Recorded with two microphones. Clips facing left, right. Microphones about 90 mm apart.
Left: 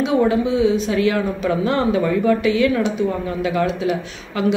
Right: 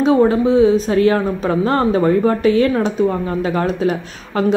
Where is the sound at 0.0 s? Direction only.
40° right (ahead or behind).